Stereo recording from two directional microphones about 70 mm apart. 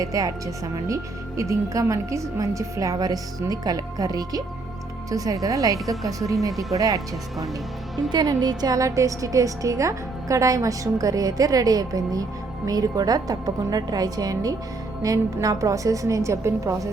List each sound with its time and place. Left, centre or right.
0.0 s a woman's voice: right
6.5 s speech: centre
6.7 s a woman's voice: right
8.1 s a woman's voice: right